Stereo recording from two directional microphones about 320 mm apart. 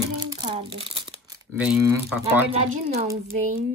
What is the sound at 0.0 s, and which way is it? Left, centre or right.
Crumpling, centre.